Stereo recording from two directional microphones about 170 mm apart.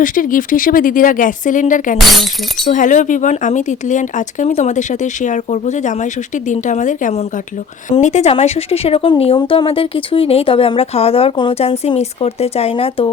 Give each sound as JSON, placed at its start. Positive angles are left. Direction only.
{"t": 0.0, "sound": "speech", "side_deg": 50}
{"t": 2.0, "sound": "speech", "side_deg": 0}
{"t": 2.6, "sound": "speech", "side_deg": 50}